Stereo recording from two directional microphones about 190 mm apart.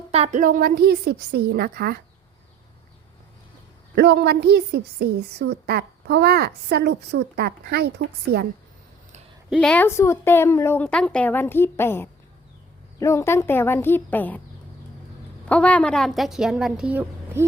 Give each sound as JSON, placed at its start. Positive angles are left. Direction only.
{"t": 0.1, "sound": "a woman's voice", "side_deg": -35}
{"t": 3.9, "sound": "a woman's voice", "side_deg": -60}
{"t": 9.5, "sound": "a woman's voice", "side_deg": 5}
{"t": 15.4, "sound": "a woman's voice", "side_deg": 5}